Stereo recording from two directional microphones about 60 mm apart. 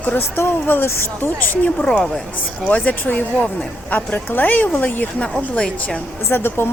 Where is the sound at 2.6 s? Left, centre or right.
Left.